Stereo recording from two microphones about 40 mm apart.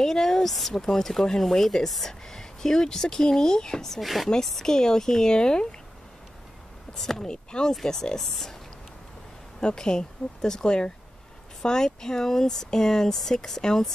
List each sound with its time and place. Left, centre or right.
0.0 s speech: centre
4.0 s speech: centre
4.6 s speech: centre
7.0 s speech: centre
7.2 s speech: centre
9.6 s speech: left